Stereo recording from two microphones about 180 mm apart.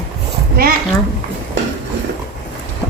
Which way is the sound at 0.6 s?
55° right (ahead or behind).